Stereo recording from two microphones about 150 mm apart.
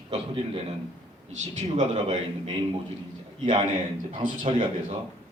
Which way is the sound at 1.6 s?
50° right (ahead or behind).